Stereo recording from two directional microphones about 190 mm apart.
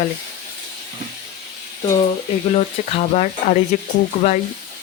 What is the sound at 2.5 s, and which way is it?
Speech, 35° left (ahead or behind).